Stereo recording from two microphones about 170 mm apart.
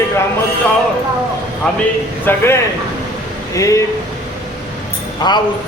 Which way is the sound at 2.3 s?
10° left (ahead or behind).